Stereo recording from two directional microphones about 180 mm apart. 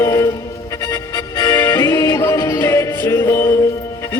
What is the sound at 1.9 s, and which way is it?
Music, 15° left (ahead or behind).